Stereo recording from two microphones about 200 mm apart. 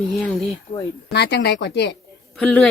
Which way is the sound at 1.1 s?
55° left (ahead or behind).